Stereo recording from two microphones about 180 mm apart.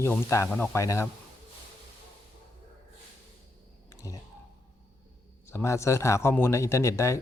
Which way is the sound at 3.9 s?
20° left (ahead or behind).